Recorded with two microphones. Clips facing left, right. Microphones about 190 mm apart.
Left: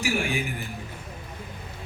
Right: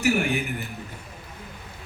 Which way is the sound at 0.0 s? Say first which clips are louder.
Right 4 dB; 65° right (ahead or behind).